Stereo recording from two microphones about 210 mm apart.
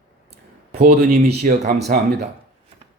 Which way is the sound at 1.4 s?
35° right (ahead or behind).